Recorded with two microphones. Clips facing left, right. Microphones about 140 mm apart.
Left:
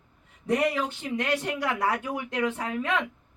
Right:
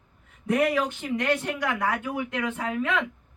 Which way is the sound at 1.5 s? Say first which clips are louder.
Even; 35° left (ahead or behind).